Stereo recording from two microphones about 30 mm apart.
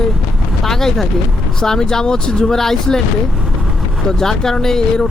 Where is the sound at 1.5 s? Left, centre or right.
Centre.